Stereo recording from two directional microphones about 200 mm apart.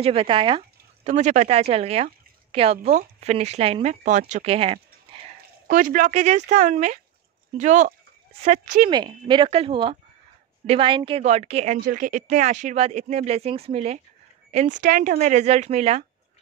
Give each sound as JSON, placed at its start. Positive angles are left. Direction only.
{"t": 0.0, "sound": "a woman's voice", "side_deg": -30}
{"t": 5.7, "sound": "a woman's voice", "side_deg": -40}
{"t": 8.9, "sound": "a woman's voice", "side_deg": -20}